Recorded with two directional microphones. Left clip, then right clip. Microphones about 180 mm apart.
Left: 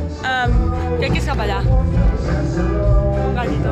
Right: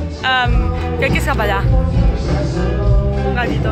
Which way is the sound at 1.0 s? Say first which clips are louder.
Right 9 dB; 30° right (ahead or behind).